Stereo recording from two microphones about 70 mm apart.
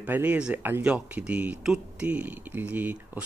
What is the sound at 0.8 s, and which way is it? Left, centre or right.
Speech, centre.